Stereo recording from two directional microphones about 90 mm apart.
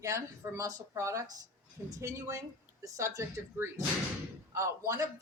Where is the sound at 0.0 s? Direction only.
35° right (ahead or behind).